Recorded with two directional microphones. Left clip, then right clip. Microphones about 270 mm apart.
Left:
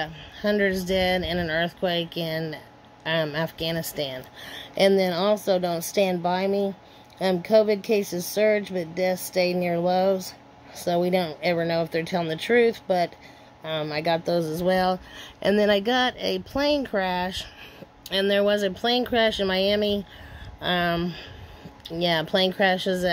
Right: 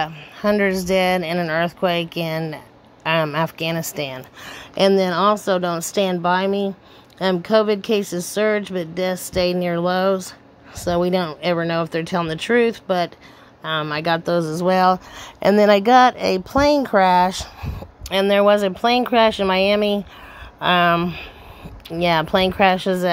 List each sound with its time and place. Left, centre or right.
0.0 s speech: centre
2.0 s speech: right
2.2 s speech: centre
18.0 s speech: centre
20.6 s speech: centre